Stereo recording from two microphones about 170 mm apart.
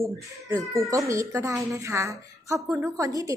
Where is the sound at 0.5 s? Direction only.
20° right (ahead or behind).